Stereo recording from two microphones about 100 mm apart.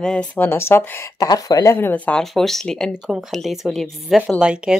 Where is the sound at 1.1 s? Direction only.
40° left (ahead or behind); by 2.1 s 20° left (ahead or behind).